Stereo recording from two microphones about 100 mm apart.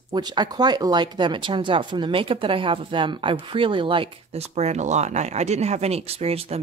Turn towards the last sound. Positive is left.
turn(degrees=-85)